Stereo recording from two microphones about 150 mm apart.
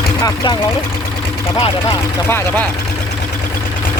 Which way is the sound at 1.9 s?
15° left (ahead or behind).